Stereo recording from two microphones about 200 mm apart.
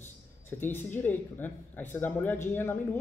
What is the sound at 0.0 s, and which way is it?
Speech, 10° left (ahead or behind).